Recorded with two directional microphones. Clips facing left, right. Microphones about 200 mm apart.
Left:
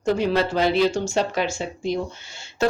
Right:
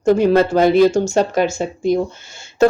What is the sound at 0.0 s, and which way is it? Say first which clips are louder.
Speech: right 8 dB; 45° right (ahead or behind).